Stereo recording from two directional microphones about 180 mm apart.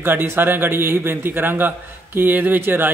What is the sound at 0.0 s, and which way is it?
Speech, 10° right (ahead or behind).